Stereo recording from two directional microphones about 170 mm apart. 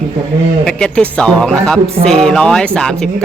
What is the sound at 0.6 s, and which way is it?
A man's voice, 5° left (ahead or behind).